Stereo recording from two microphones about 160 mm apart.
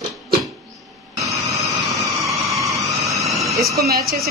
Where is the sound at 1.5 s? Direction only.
Centre (ahead or behind).